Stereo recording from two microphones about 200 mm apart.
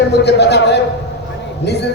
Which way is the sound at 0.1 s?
55° left (ahead or behind).